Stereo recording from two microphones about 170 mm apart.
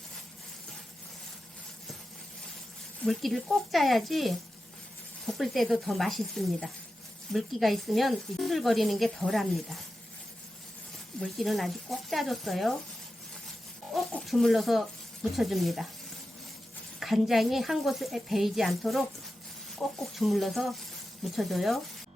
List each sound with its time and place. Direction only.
3.0 s speech: centre (ahead or behind)
11.2 s speech: centre (ahead or behind)
13.9 s speech: centre (ahead or behind)
17.0 s speech: centre (ahead or behind)